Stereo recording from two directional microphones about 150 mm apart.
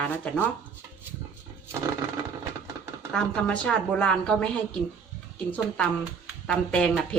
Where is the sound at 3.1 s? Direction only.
5° left (ahead or behind).